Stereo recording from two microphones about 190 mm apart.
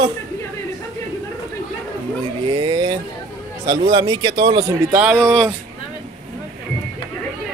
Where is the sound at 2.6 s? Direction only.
25° right (ahead or behind).